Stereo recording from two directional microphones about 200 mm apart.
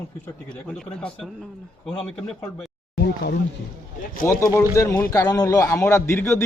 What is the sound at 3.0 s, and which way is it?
Speech, 60° left (ahead or behind).